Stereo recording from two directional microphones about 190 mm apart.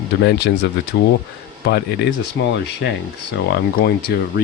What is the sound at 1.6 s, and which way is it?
Speech, 65° left (ahead or behind).